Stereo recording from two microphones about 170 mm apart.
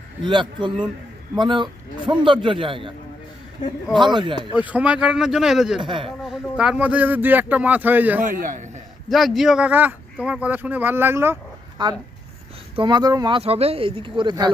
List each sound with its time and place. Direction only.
0.2 s speech: 25° right (ahead or behind)
3.9 s speech: 25° right (ahead or behind)
4.5 s a man's voice: 10° right (ahead or behind)
5.8 s speech: 30° right (ahead or behind)
6.1 s speech: centre (ahead or behind)
8.2 s a man's voice: 50° right (ahead or behind)
9.0 s speech: centre (ahead or behind)
11.8 s speech: 25° right (ahead or behind)